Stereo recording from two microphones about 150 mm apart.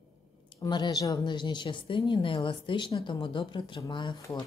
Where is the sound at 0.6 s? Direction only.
30° left (ahead or behind).